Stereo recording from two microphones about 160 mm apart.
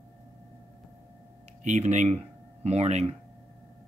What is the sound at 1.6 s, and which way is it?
Speech, 45° right (ahead or behind).